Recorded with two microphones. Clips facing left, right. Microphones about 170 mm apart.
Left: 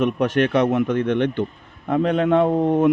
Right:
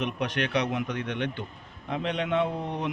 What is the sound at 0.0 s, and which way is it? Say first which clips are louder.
Speech: left 10 dB; 50° left (ahead or behind).